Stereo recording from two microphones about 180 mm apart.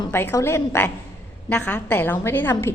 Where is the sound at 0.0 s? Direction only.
15° left (ahead or behind).